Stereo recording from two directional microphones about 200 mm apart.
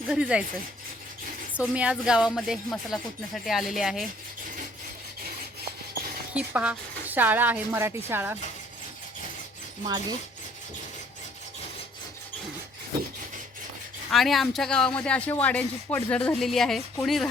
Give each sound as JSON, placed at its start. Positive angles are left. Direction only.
{"t": 0.1, "sound": "speech", "side_deg": -5}
{"t": 1.5, "sound": "speech", "side_deg": -5}
{"t": 6.3, "sound": "a woman's voice", "side_deg": -5}
{"t": 9.8, "sound": "speech", "side_deg": -20}
{"t": 14.1, "sound": "speech", "side_deg": 0}